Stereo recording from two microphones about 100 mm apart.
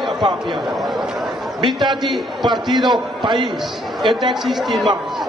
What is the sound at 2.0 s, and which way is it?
Speech, centre (ahead or behind).